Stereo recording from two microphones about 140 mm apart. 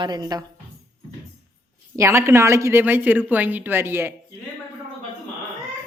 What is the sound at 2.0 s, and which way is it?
A woman's voice, 20° right (ahead or behind).